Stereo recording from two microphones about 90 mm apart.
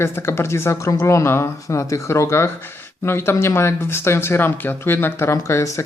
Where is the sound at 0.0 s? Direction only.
25° left (ahead or behind).